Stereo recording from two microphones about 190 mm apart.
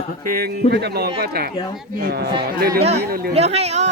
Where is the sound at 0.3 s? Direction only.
55° right (ahead or behind).